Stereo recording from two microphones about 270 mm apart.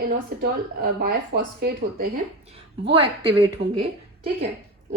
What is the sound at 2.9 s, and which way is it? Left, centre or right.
A woman's voice, centre.